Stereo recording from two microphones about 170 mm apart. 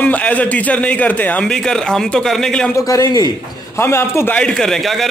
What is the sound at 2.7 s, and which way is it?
A man's voice, 20° left (ahead or behind).